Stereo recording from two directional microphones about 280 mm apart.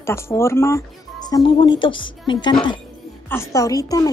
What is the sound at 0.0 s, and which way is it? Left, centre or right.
A woman's voice, centre.